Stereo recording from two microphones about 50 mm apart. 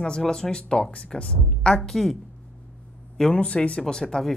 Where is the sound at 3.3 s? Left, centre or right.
Left.